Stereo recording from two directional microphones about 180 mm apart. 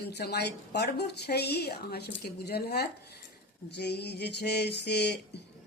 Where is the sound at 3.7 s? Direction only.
65° left (ahead or behind).